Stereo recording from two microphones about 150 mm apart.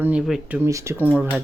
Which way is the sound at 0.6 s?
20° right (ahead or behind).